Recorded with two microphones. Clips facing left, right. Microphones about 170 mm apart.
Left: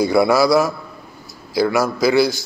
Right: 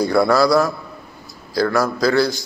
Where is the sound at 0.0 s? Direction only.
5° left (ahead or behind).